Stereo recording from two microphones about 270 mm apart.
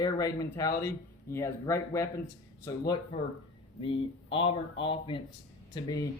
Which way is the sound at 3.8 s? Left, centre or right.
Centre.